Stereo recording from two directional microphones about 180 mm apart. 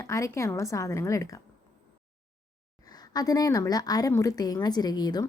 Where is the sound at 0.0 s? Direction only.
15° left (ahead or behind).